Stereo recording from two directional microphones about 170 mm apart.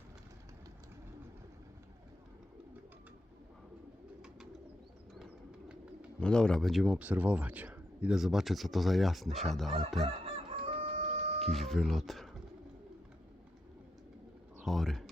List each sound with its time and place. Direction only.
5.1 s bird: 5° right (ahead or behind)
6.1 s speech: 5° left (ahead or behind)
10.1 s chicken: 35° right (ahead or behind)
11.3 s speech: centre (ahead or behind)
14.6 s speech: centre (ahead or behind)